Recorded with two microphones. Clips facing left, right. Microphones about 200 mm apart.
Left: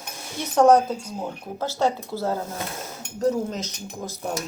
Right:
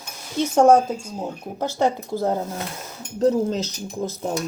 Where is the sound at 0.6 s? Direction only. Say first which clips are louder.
Right 1 dB; 25° right (ahead or behind).